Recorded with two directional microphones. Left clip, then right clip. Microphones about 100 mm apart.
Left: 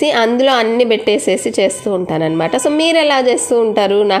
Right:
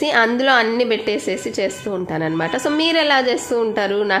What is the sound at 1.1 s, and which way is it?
A woman's voice, 55° left (ahead or behind).